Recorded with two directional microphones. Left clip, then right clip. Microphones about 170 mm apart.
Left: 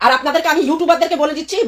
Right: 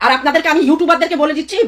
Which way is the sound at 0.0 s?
25° right (ahead or behind).